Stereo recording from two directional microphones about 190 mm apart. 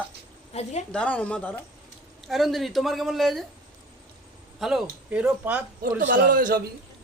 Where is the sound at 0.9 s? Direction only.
5° left (ahead or behind).